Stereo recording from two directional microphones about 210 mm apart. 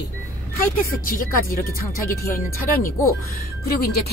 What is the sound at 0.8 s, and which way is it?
Speech, 45° left (ahead or behind).